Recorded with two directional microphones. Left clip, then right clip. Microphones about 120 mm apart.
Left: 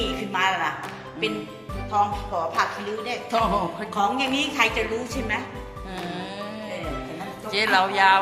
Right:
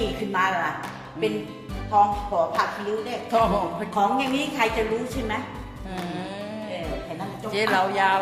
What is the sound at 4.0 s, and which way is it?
Speech, 35° right (ahead or behind).